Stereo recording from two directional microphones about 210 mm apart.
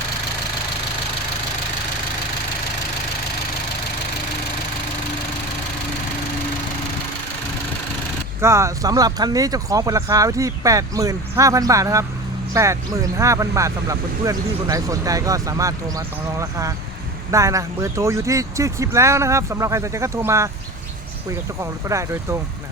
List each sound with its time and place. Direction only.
8.4 s speech: 15° right (ahead or behind)
21.6 s speech: 15° right (ahead or behind)